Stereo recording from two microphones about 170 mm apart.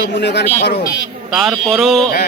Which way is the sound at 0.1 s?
85° left.